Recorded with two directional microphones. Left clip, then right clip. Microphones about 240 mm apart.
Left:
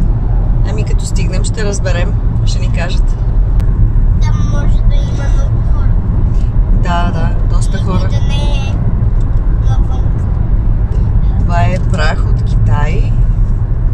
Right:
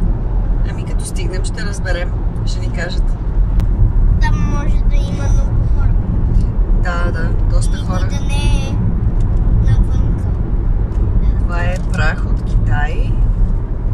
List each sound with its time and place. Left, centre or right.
1.7 s speech: centre
6.9 s speech: centre
11.5 s speech: centre